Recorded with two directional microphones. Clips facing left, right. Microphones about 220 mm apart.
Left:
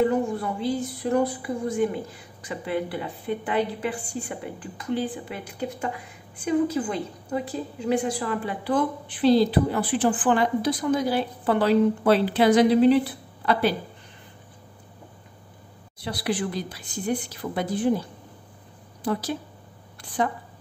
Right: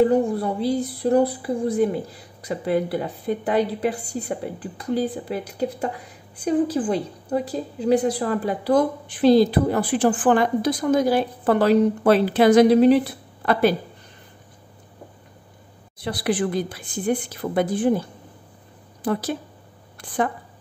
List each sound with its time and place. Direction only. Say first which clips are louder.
0.0 s a woman's voice: right 4 dB; 35° right (ahead or behind)
16.0 s a woman's voice: right 4 dB; 50° right (ahead or behind)